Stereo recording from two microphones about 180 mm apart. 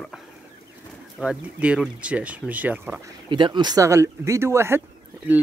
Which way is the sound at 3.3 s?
25° right (ahead or behind).